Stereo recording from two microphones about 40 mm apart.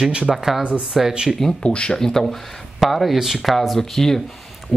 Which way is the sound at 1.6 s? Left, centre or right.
Left.